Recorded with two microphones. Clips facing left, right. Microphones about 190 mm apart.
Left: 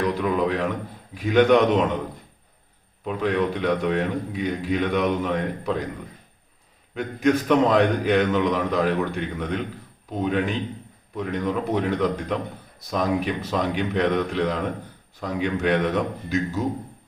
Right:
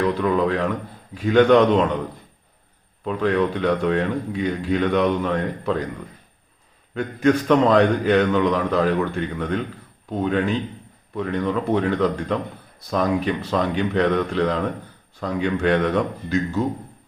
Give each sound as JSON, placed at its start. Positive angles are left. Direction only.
{"t": 0.2, "sound": "speech", "side_deg": 5}
{"t": 3.1, "sound": "speech", "side_deg": 0}
{"t": 6.9, "sound": "speech", "side_deg": 0}